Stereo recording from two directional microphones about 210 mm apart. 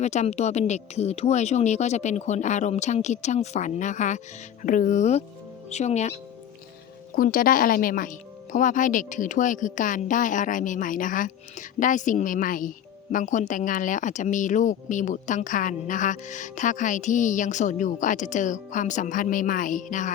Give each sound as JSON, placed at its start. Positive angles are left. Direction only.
{"t": 0.0, "sound": "speech", "side_deg": 35}